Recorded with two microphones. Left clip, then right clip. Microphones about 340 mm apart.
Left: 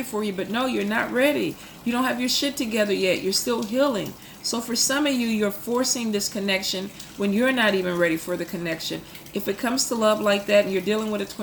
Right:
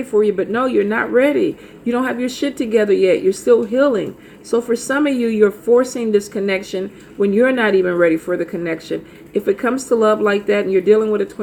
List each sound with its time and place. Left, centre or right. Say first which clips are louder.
0.2 s speech: right 11 dB; centre